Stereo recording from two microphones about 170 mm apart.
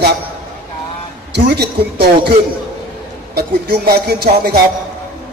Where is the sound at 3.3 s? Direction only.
65° right (ahead or behind).